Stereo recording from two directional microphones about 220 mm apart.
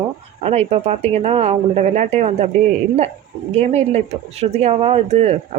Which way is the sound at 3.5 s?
30° right (ahead or behind).